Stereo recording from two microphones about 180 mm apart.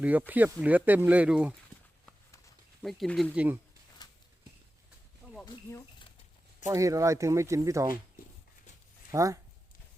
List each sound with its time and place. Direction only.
0.0 s speech: 10° right (ahead or behind)
2.8 s speech: centre (ahead or behind)
3.3 s speech: 10° right (ahead or behind)
5.5 s a sound: 25° left (ahead or behind)
6.7 s speech: 15° right (ahead or behind)
9.1 s speech: 15° right (ahead or behind)